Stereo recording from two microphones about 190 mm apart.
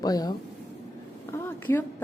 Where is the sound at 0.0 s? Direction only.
20° left (ahead or behind).